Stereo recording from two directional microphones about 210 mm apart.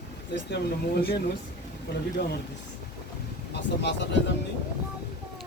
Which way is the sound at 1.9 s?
55° left (ahead or behind).